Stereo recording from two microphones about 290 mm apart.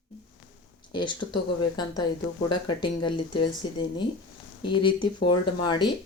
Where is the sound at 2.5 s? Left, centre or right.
Centre.